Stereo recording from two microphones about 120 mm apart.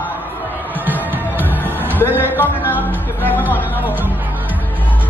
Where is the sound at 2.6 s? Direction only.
15° left (ahead or behind).